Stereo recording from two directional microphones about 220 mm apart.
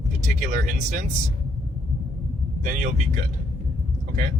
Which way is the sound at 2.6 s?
35° right (ahead or behind).